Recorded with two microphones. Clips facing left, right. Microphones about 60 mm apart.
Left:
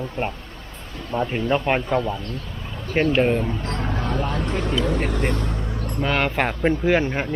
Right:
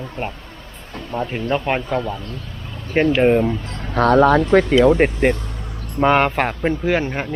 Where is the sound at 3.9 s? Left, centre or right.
Right.